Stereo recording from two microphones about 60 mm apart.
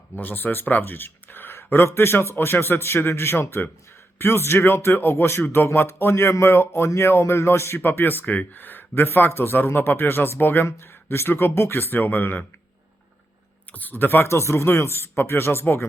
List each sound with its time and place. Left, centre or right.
0.2 s speech: left
7.8 s speech: left
13.7 s speech: left